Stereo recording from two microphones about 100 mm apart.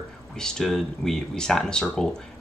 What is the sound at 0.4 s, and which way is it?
Speech, 5° left (ahead or behind).